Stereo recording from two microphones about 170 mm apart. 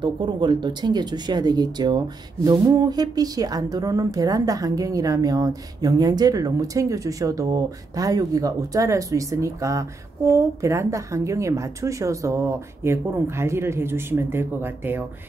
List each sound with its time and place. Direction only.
0.0 s a woman's voice: 25° right (ahead or behind)